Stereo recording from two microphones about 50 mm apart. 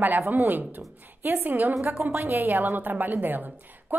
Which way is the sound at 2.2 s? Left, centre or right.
Right.